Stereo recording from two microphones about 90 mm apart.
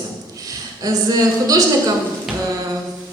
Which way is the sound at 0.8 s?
45° right (ahead or behind).